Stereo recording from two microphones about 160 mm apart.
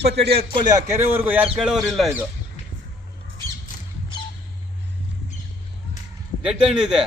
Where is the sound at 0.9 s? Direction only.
15° right (ahead or behind); by 2.1 s centre (ahead or behind).